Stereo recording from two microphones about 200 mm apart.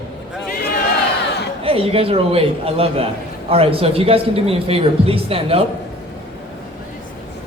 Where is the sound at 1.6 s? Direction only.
30° right (ahead or behind).